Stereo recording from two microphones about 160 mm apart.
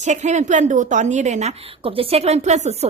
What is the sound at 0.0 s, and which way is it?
A woman's voice, 50° right (ahead or behind).